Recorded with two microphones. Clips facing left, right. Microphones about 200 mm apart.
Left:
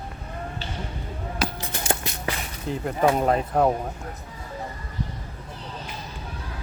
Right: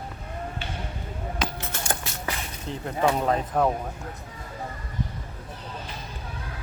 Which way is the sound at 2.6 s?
5° left (ahead or behind).